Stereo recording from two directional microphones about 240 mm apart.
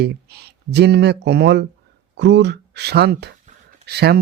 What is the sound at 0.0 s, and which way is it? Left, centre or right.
Speech, right.